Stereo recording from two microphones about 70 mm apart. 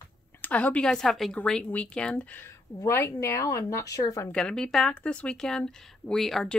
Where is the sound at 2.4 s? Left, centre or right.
Left.